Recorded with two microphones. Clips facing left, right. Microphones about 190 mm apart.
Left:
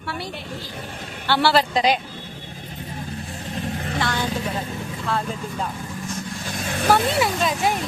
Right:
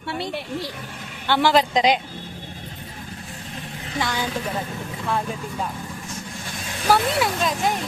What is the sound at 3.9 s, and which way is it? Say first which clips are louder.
A woman's voice: right 1 dB; 15° right (ahead or behind).